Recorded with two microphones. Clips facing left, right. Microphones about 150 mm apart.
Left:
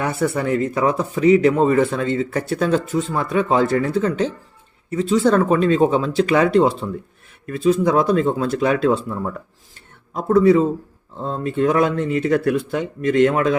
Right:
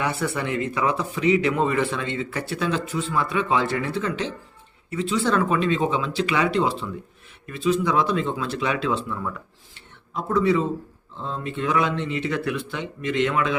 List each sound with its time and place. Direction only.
0.0 s speech: 45° left (ahead or behind)